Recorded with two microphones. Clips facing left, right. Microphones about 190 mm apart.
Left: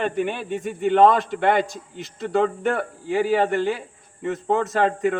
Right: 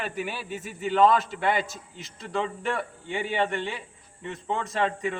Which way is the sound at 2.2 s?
55° left (ahead or behind).